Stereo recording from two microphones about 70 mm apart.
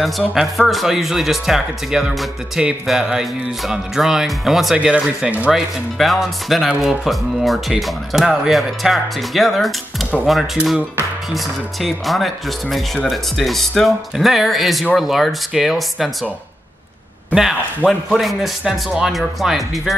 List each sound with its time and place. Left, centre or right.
0.3 s speech: centre
4.7 s speech: centre
5.5 s speech: centre
17.3 s speech: centre